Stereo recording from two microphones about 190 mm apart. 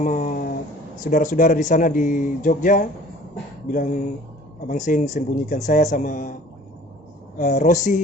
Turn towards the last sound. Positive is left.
turn(degrees=40)  # may be behind; listen again after turning